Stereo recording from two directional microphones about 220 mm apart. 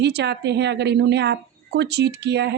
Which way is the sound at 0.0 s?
50° right (ahead or behind).